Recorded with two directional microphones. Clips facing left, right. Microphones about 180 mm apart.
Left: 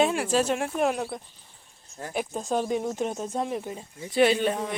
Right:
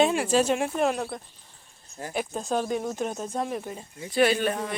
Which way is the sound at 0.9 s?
10° left (ahead or behind).